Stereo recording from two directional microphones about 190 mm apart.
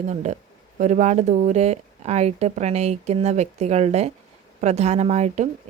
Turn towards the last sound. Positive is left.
turn(degrees=-35)  # may be behind; listen again after turning